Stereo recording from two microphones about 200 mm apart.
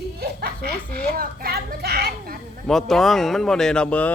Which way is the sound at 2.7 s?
Centre (ahead or behind).